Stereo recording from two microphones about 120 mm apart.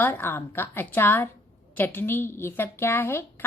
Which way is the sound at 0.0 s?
15° left (ahead or behind).